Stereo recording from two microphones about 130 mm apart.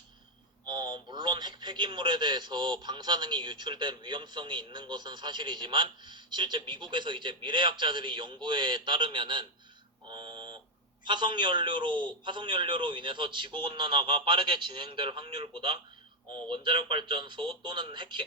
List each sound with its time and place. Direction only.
0.7 s a man's voice: 35° right (ahead or behind)
10.1 s mantra: 35° right (ahead or behind)
11.0 s a man's voice: 35° right (ahead or behind)